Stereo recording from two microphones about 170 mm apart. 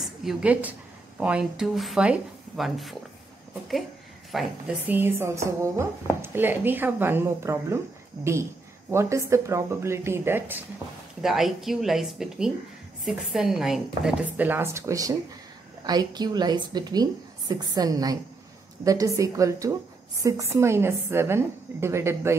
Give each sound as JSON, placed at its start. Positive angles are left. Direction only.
{"t": 0.0, "sound": "a woman's voice", "side_deg": 0}
{"t": 4.3, "sound": "a woman's voice", "side_deg": 0}
{"t": 11.1, "sound": "a woman's voice", "side_deg": 0}